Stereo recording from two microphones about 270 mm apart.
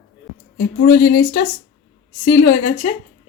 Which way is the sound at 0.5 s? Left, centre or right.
Left.